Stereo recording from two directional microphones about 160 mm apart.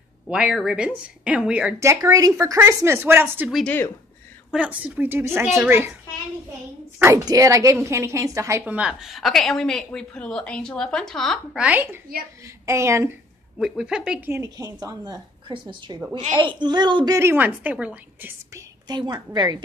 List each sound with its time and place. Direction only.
0.3 s a woman's voice: 5° right (ahead or behind)
1.8 s a woman's voice: 20° right (ahead or behind)
3.4 s a woman's voice: centre (ahead or behind)
7.0 s a woman's voice: 20° right (ahead or behind)
13.6 s a woman's voice: 5° right (ahead or behind)
14.3 s a woman's voice: 20° right (ahead or behind)
18.5 s a woman's voice: 25° right (ahead or behind)